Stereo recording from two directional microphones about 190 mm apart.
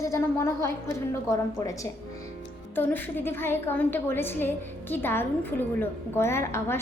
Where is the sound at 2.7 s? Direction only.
10° left (ahead or behind).